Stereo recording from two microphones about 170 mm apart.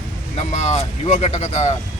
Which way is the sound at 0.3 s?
40° left (ahead or behind).